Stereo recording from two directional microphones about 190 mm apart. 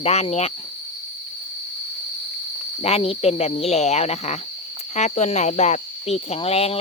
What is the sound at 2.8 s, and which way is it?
Cricket, 30° left (ahead or behind).